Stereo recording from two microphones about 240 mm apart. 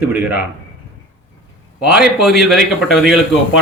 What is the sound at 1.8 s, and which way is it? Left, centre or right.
A man's voice, centre.